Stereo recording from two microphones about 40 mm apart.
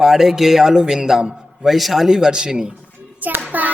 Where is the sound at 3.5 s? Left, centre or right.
Right.